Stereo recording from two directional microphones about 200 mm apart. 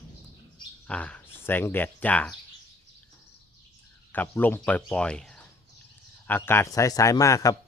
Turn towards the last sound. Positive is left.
turn(degrees=15)  # may be behind; listen again after turning